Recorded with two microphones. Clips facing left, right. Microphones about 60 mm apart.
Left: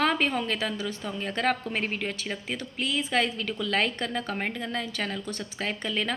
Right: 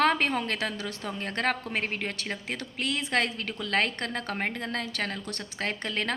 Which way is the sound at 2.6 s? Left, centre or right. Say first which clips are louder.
Left 2 dB; right.